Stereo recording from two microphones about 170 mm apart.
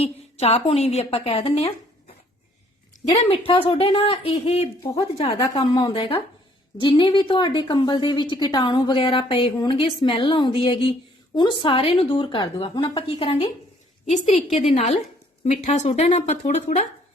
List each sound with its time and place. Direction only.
0.0 s a woman's voice: 35° left (ahead or behind)
3.2 s a woman's voice: 35° left (ahead or behind)